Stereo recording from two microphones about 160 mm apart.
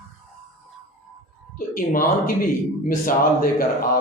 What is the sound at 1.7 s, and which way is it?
A man's voice, 60° left (ahead or behind).